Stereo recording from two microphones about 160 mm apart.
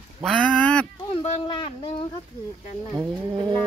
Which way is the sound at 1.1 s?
35° left (ahead or behind).